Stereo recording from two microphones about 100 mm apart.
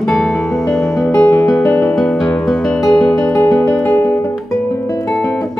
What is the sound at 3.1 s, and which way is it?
Music, 30° left (ahead or behind).